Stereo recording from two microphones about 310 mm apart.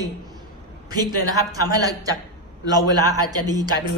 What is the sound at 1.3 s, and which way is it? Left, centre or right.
A woman's voice, centre.